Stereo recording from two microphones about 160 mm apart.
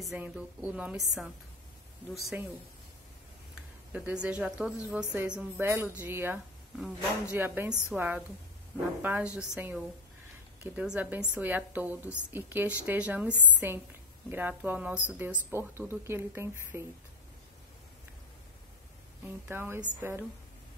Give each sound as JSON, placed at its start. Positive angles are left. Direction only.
{"t": 0.0, "sound": "a woman's voice", "side_deg": -5}
{"t": 3.9, "sound": "a woman's voice", "side_deg": -5}
{"t": 9.3, "sound": "a woman's voice", "side_deg": 15}
{"t": 9.6, "sound": "a woman's voice", "side_deg": -10}
{"t": 19.2, "sound": "a woman's voice", "side_deg": -10}